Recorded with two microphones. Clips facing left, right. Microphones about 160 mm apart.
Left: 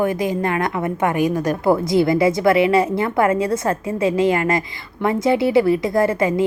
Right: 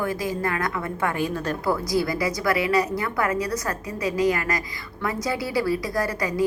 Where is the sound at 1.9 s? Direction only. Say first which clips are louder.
Left 8 dB; 25° left (ahead or behind).